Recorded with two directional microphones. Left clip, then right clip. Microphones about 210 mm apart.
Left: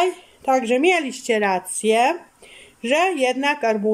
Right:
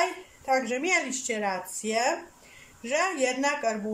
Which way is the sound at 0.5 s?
50° left (ahead or behind).